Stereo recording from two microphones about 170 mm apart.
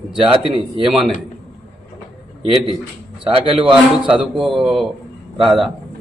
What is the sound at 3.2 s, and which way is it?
Speech, 30° right (ahead or behind).